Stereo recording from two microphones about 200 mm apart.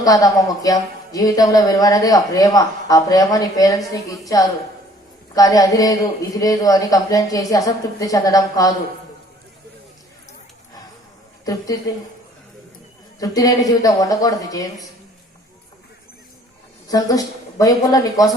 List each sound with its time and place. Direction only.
0.0 s speech: 20° left (ahead or behind)
5.3 s speech: 15° left (ahead or behind)
13.1 s speech: 20° left (ahead or behind)
16.9 s speech: 20° left (ahead or behind)